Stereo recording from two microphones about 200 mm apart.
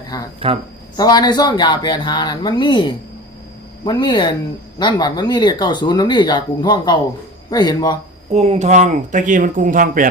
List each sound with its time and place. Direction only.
0.3 s speech: 30° right (ahead or behind)
0.9 s speech: 20° left (ahead or behind)
8.3 s speech: 35° right (ahead or behind)